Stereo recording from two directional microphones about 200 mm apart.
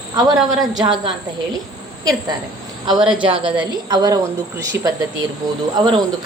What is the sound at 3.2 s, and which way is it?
A woman's voice, 25° right (ahead or behind).